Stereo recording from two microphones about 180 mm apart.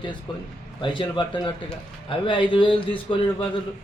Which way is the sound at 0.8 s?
25° left (ahead or behind).